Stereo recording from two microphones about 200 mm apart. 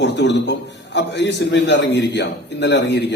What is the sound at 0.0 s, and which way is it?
A man's voice, 60° left (ahead or behind).